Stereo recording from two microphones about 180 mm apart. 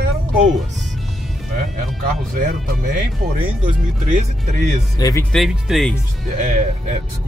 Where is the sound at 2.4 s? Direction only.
50° right (ahead or behind).